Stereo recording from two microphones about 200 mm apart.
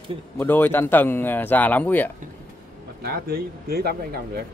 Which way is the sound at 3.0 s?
50° right (ahead or behind).